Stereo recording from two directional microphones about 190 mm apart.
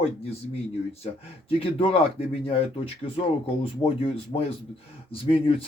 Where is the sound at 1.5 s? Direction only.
30° left (ahead or behind).